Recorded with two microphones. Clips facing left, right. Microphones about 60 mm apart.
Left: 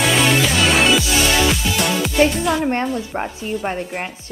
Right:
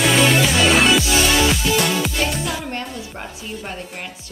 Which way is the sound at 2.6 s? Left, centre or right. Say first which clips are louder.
Left 8 dB; left.